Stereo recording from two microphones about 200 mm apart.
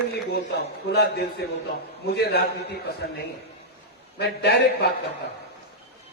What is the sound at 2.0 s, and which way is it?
Speech, 55° left (ahead or behind).